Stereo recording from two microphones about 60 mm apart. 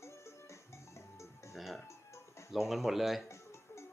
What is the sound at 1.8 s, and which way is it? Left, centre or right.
Music, left.